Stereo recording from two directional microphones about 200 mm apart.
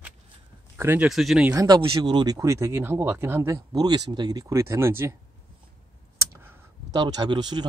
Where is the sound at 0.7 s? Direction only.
10° right (ahead or behind).